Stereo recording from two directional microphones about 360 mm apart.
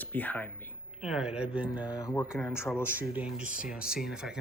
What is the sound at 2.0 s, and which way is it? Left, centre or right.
Speech, centre.